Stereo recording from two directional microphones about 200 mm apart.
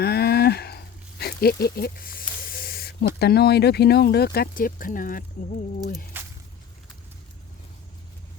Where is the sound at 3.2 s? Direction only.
55° left (ahead or behind).